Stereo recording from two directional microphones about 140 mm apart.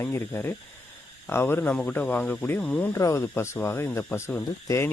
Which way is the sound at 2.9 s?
20° left (ahead or behind).